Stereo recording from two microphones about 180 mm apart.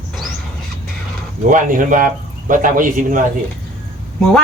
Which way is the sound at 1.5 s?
50° right (ahead or behind).